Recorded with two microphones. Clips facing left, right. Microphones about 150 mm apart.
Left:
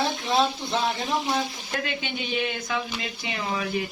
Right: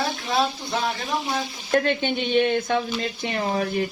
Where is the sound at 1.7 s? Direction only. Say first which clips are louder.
Right 9 dB; 50° right (ahead or behind).